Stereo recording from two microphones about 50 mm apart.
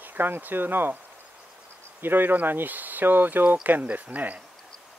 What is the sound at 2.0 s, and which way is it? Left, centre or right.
Speech, right.